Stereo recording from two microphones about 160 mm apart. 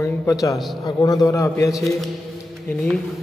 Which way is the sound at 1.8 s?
Centre (ahead or behind).